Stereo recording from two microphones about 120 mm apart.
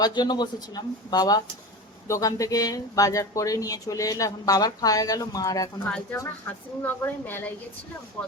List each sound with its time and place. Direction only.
0.0 s speech: 35° left (ahead or behind)
5.8 s a woman's voice: 10° left (ahead or behind)